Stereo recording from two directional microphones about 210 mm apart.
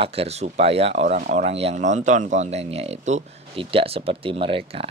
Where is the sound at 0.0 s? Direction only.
30° right (ahead or behind).